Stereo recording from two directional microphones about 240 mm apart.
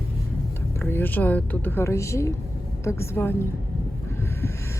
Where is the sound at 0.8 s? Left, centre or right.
Centre.